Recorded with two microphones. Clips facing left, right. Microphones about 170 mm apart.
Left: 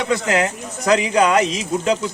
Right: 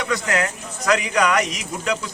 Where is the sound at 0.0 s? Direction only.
25° left (ahead or behind).